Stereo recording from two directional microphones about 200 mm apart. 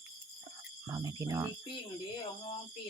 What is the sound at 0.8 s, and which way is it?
Cricket, 15° right (ahead or behind).